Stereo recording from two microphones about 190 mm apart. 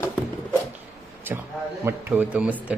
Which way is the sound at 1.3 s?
10° right (ahead or behind).